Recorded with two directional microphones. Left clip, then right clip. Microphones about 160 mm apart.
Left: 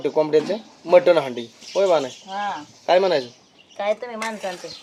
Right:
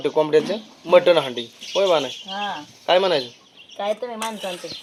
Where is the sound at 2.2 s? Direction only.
55° right (ahead or behind).